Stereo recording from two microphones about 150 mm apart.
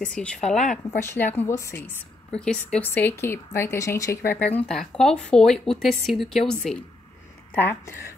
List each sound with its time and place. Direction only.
0.0 s speech: 5° left (ahead or behind)
0.8 s speech: 15° left (ahead or behind)
2.3 s speech: 5° left (ahead or behind)
4.6 s speech: 5° left (ahead or behind)